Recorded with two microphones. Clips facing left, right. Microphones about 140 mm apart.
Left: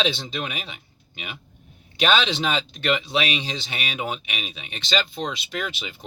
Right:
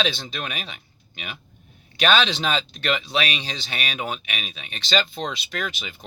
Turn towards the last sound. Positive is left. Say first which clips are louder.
# even
turn(degrees=20)  # may be behind; listen again after turning